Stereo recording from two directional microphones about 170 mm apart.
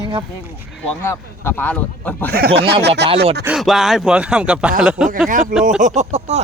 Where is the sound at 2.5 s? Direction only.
75° right (ahead or behind).